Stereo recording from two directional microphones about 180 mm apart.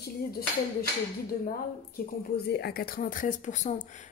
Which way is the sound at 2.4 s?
65° left (ahead or behind).